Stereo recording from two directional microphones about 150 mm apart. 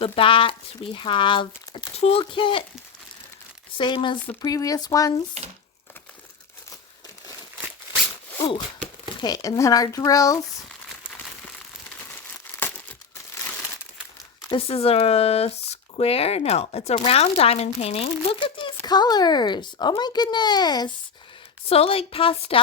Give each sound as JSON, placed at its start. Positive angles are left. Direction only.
{"t": 0.0, "sound": "speech", "side_deg": 35}
{"t": 3.8, "sound": "speech", "side_deg": 35}
{"t": 9.1, "sound": "speech", "side_deg": 25}
{"t": 12.5, "sound": "crumpling", "side_deg": 15}
{"t": 14.5, "sound": "speech", "side_deg": 40}
{"t": 21.7, "sound": "speech", "side_deg": 40}